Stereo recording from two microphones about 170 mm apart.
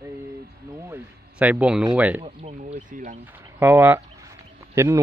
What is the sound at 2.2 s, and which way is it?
Speech, 40° right (ahead or behind).